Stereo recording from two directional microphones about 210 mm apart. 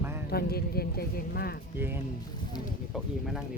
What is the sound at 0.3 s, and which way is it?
Speech, 50° left (ahead or behind).